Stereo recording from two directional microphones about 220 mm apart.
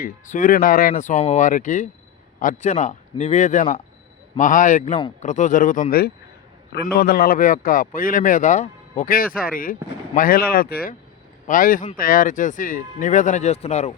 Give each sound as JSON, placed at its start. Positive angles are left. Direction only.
{"t": 0.0, "sound": "speech", "side_deg": 35}